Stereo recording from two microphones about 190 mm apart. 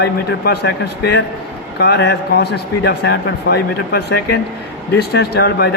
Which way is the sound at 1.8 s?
60° left (ahead or behind).